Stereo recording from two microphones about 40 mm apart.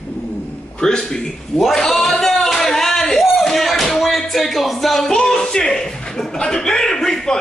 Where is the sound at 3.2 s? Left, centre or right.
Centre.